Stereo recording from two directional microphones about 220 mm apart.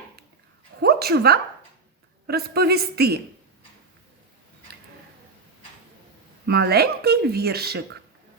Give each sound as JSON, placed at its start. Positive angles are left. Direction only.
{"t": 0.8, "sound": "speech", "side_deg": -45}
{"t": 6.4, "sound": "speech", "side_deg": -45}